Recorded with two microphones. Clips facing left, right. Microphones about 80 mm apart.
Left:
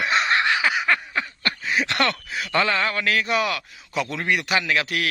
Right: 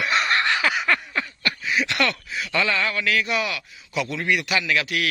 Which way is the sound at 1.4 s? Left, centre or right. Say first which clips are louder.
Even; left.